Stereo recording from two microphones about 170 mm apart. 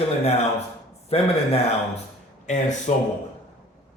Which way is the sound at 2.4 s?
45° left (ahead or behind).